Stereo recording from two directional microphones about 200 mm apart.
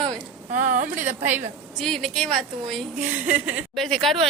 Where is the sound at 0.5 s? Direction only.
40° right (ahead or behind).